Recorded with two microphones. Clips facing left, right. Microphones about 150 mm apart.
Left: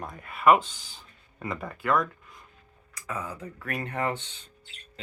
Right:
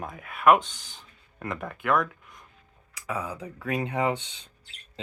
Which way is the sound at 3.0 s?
15° right (ahead or behind).